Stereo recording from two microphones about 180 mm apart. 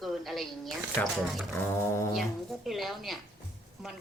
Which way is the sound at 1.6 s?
15° left (ahead or behind).